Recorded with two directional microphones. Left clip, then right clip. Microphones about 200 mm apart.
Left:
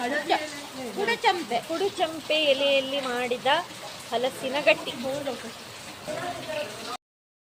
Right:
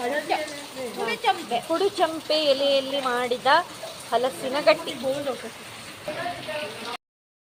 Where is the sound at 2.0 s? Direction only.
10° right (ahead or behind).